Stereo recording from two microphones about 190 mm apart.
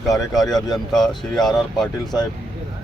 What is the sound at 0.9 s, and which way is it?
Speech, centre (ahead or behind).